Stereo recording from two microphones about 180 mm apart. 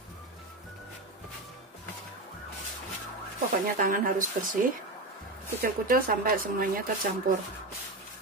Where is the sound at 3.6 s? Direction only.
50° right (ahead or behind).